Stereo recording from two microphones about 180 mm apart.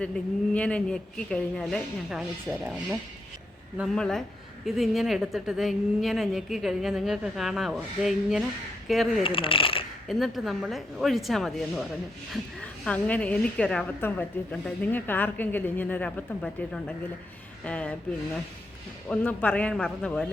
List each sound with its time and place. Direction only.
0.0 s speech: 5° left (ahead or behind)
3.9 s speech: 5° left (ahead or behind)
9.2 s speech: 30° left (ahead or behind)
10.1 s a woman's voice: centre (ahead or behind)
19.0 s a woman's voice: 10° left (ahead or behind)